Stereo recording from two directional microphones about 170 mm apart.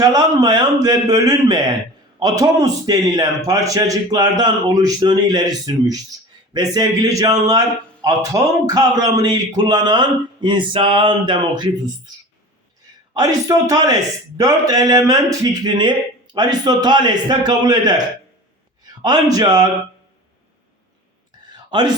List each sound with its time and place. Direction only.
0.0 s speech: 25° right (ahead or behind)
13.1 s speech: 20° right (ahead or behind)
19.0 s speech: 25° right (ahead or behind)